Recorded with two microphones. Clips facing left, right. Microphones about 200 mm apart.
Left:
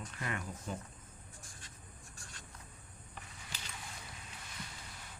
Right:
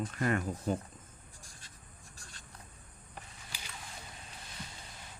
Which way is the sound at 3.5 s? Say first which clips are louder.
Right 1 dB; 10° right (ahead or behind).